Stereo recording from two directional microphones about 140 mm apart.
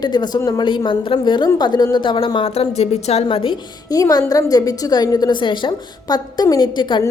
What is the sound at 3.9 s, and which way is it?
A woman's voice, 25° left (ahead or behind).